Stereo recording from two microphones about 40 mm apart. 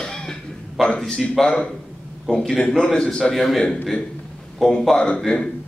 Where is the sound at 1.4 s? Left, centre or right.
Left.